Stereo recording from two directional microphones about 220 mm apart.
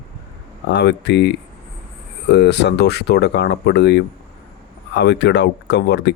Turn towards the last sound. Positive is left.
turn(degrees=50)  # may be behind; listen again after turning